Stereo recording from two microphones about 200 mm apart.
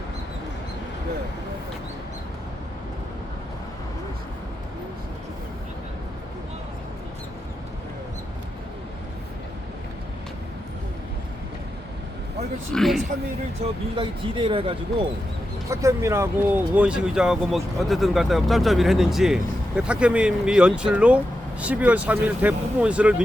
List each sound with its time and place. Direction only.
12.7 s speech: centre (ahead or behind)
13.9 s speech: 25° right (ahead or behind)
15.7 s speech: 15° right (ahead or behind)